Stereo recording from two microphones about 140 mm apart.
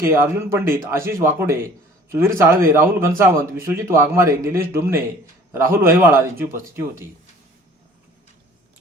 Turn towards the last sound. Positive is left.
turn(degrees=-15)  # may be behind; listen again after turning